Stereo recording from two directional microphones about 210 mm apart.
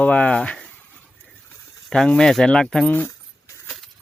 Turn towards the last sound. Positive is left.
turn(degrees=10)  # may be behind; listen again after turning